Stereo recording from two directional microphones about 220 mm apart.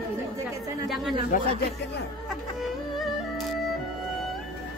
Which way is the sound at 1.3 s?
35° left (ahead or behind).